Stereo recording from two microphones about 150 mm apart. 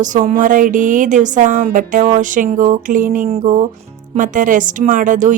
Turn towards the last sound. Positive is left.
turn(degrees=-60)  # may be behind; listen again after turning